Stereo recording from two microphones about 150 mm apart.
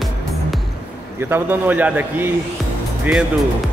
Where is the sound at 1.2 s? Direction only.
15° right (ahead or behind).